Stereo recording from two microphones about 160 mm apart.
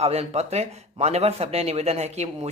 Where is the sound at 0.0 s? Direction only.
40° right (ahead or behind).